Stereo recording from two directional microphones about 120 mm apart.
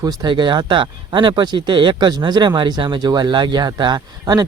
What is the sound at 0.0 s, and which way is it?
Speech, 35° right (ahead or behind).